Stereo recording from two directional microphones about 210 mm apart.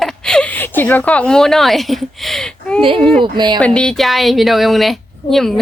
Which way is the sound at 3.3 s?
20° right (ahead or behind).